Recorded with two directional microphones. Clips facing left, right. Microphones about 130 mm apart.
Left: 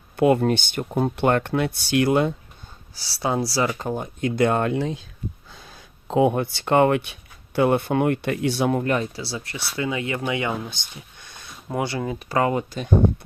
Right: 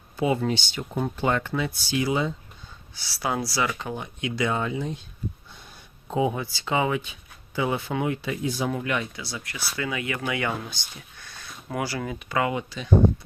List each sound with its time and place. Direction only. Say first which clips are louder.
0.2 s speech: left 6 dB; 60° left (ahead or behind)
2.9 s speech: left 4 dB; 30° left (ahead or behind); by 4.9 s 75° left (ahead or behind)
5.5 s speech: left 3 dB; 90° left; by 8.7 s 70° left (ahead or behind)
8.7 s speech: left 6 dB; 40° left (ahead or behind)